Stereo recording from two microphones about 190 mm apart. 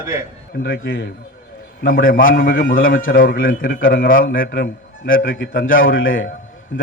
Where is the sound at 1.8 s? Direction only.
50° left (ahead or behind); by 5.1 s 70° left (ahead or behind).